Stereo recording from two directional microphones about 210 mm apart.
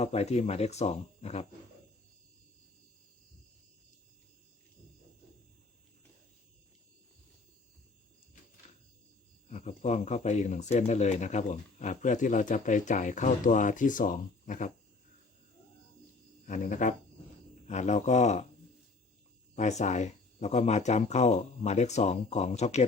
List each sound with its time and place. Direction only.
0.0 s speech: 30° left (ahead or behind)
9.5 s speech: 30° left (ahead or behind)
16.5 s speech: 35° left (ahead or behind)
19.5 s speech: 35° left (ahead or behind)